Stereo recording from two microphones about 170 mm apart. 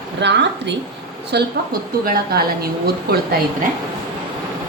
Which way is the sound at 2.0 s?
60° right (ahead or behind).